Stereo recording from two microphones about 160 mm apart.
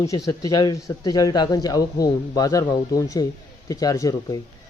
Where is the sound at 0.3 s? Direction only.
25° left (ahead or behind).